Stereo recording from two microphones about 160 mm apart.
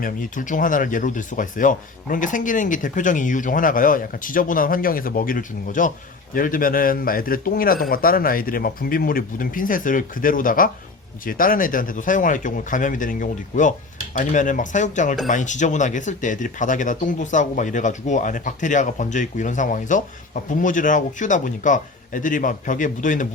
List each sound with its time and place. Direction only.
0.0 s speech: 55° left (ahead or behind)